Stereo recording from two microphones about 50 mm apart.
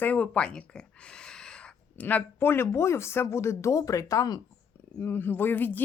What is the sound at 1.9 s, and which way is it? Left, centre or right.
Speech, left.